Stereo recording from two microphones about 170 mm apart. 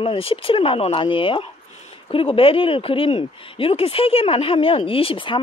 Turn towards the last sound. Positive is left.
turn(degrees=30)  # may be behind; listen again after turning